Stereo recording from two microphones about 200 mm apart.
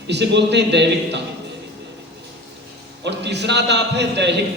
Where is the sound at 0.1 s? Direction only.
60° right (ahead or behind).